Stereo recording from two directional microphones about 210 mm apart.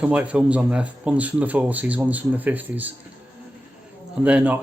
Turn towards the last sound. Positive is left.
turn(degrees=-5)  # may be behind; listen again after turning